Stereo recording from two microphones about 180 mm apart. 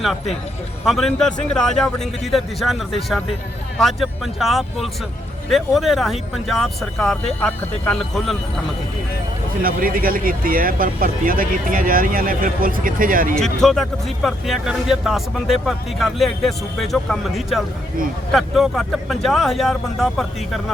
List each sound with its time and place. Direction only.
0.0 s speech: centre (ahead or behind)
9.6 s speech: 50° right (ahead or behind)
13.4 s speech: centre (ahead or behind)